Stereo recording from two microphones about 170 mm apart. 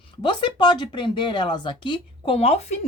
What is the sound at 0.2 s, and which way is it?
Speech, 30° left (ahead or behind).